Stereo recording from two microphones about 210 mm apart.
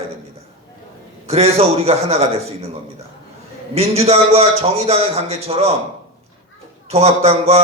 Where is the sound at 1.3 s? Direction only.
30° right (ahead or behind).